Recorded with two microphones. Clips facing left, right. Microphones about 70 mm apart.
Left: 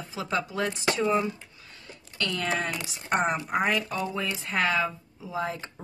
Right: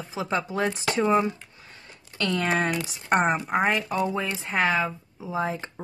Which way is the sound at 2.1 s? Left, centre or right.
Right.